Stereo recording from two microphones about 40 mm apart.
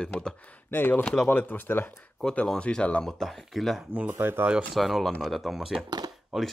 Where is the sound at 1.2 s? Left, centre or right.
Left.